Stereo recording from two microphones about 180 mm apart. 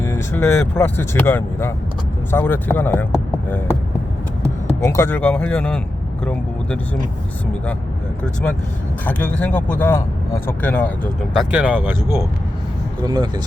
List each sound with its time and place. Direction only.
0.0 s speech: 15° left (ahead or behind)
4.8 s speech: 15° left (ahead or behind)
9.0 s speech: 10° left (ahead or behind)
11.3 s speech: 5° right (ahead or behind)
13.0 s speech: 25° right (ahead or behind)